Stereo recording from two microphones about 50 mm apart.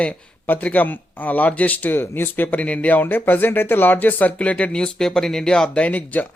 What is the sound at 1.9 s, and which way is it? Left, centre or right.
Speech, left.